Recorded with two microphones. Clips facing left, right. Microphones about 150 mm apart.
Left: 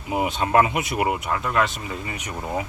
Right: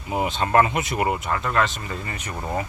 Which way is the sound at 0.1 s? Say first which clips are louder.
Even; 5° left (ahead or behind).